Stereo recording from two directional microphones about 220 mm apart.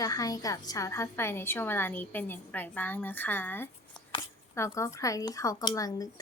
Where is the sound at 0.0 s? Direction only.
15° left (ahead or behind).